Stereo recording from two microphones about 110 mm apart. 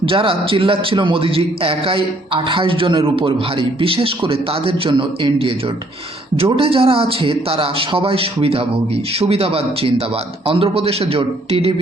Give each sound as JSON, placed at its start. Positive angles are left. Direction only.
{"t": 0.0, "sound": "a man's voice", "side_deg": -55}
{"t": 6.3, "sound": "speech", "side_deg": -60}